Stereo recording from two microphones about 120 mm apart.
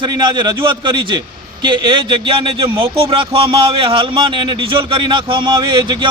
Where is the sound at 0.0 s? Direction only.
40° right (ahead or behind).